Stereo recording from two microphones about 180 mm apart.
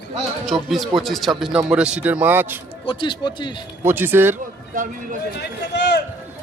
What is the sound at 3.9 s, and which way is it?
Speech, 10° right (ahead or behind).